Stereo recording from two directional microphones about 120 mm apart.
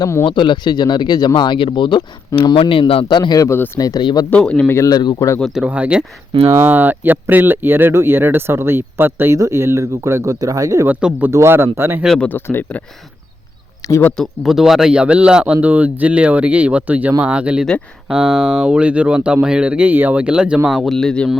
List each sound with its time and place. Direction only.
0.0 s speech: 20° left (ahead or behind)
0.3 s speech: 40° left (ahead or behind)
4.3 s speech: 10° left (ahead or behind)
4.7 s speech: 25° left (ahead or behind)
5.5 s speech: 10° right (ahead or behind)
6.4 s speech: 20° right (ahead or behind)
10.8 s speech: 15° right (ahead or behind)
12.2 s speech: 15° left (ahead or behind)
13.8 s speech: 30° left (ahead or behind)
14.2 s a man's voice: centre (ahead or behind)